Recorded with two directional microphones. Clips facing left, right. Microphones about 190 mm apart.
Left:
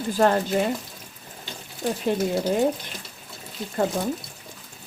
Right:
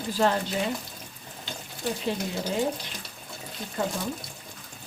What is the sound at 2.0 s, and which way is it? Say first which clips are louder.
Speech: left 9 dB; 50° left (ahead or behind).